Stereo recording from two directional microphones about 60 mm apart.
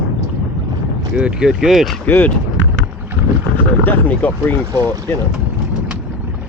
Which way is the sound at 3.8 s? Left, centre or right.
Left.